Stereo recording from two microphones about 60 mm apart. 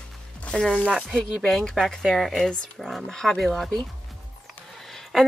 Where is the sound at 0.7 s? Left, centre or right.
Centre.